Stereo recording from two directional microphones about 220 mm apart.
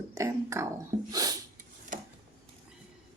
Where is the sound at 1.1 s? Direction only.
15° right (ahead or behind).